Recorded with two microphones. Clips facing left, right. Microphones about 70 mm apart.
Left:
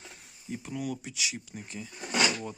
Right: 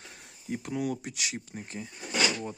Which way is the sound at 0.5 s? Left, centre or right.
Right.